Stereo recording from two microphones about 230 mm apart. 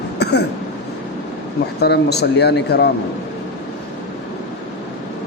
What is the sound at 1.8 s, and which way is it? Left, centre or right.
A man's voice, left.